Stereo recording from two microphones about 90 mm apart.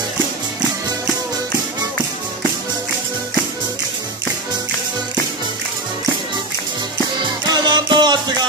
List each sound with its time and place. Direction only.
7.4 s music: 55° right (ahead or behind)